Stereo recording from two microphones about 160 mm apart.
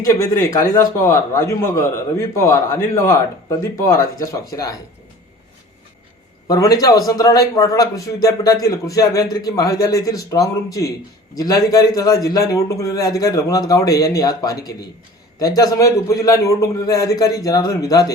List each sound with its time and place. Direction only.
0.3 s a man's voice: 20° left (ahead or behind)
6.5 s a man's voice: 25° left (ahead or behind)